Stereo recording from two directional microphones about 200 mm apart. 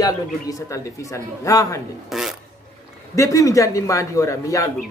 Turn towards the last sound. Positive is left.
turn(degrees=15)  # may be behind; listen again after turning